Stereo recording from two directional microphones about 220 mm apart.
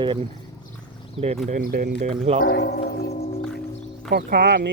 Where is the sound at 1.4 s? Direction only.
40° right (ahead or behind).